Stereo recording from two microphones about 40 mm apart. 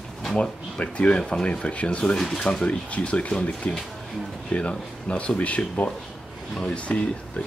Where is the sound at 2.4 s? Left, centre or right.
Left.